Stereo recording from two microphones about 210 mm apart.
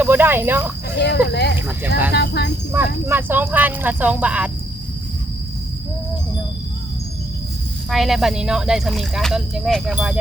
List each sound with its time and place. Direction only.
0.0 s speech: 10° right (ahead or behind)
0.9 s speech: 55° left (ahead or behind)
2.7 s speech: 10° right (ahead or behind)
7.9 s speech: centre (ahead or behind)